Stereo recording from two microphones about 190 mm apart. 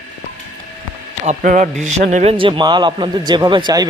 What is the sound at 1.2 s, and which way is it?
Speech, 40° right (ahead or behind).